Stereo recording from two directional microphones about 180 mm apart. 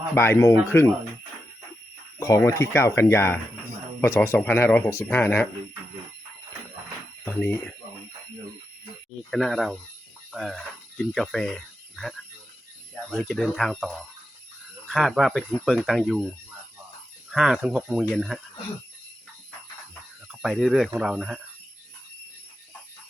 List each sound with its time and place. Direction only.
0.1 s speech: 15° left (ahead or behind)
2.1 s speech: 15° left (ahead or behind)
7.4 s speech: 10° left (ahead or behind)
9.3 s speech: centre (ahead or behind)
17.2 s speech: 5° right (ahead or behind)
20.2 s speech: centre (ahead or behind)